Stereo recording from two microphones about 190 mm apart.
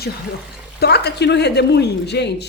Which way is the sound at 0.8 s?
60° left (ahead or behind).